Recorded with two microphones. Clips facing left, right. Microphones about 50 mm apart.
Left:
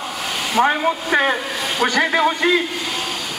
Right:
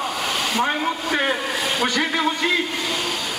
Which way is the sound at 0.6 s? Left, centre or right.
Centre.